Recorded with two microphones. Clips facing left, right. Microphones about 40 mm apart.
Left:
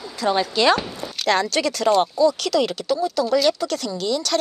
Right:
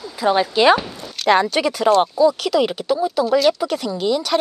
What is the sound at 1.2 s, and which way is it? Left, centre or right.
A woman's voice, centre.